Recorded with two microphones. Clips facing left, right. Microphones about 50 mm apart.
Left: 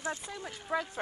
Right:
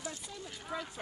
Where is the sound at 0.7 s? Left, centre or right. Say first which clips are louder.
Left 7 dB; left.